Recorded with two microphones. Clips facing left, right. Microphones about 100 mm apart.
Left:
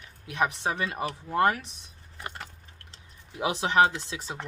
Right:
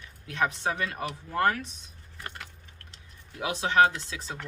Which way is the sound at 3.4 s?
25° left (ahead or behind).